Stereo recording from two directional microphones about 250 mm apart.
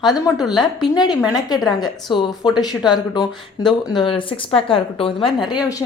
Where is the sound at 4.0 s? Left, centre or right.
Centre.